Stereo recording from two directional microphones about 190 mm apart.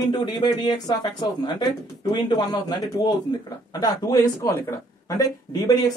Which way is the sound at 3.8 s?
20° left (ahead or behind).